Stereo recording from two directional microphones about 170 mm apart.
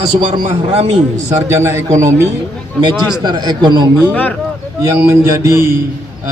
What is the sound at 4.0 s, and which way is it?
Speech, 10° left (ahead or behind).